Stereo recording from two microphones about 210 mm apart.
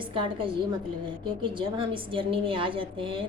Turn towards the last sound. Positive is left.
turn(degrees=-25)  # may be behind; listen again after turning